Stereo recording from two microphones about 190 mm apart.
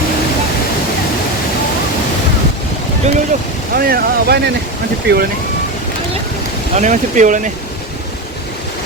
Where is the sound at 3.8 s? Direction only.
50° right (ahead or behind).